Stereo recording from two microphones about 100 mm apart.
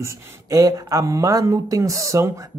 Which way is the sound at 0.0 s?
35° right (ahead or behind).